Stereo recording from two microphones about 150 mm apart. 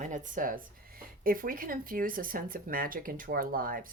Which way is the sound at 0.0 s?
60° right (ahead or behind).